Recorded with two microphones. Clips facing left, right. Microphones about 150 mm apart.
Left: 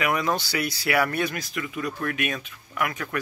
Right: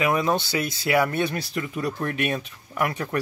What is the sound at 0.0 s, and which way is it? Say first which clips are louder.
Speech: right 3 dB; 25° right (ahead or behind).